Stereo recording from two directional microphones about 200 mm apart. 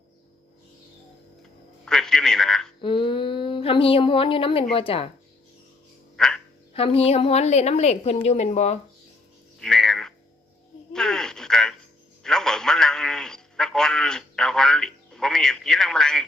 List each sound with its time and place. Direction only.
1.8 s a man's voice: 5° left (ahead or behind)
2.8 s a woman's voice: 25° left (ahead or behind)
6.1 s quack: 5° left (ahead or behind)
6.7 s a woman's voice: 30° left (ahead or behind)
9.6 s a sound: 5° left (ahead or behind)
10.9 s radio: 5° left (ahead or behind)
12.2 s a sound: 5° left (ahead or behind)